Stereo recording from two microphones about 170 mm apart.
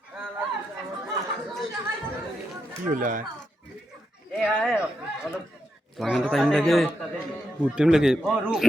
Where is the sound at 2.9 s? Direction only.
50° right (ahead or behind).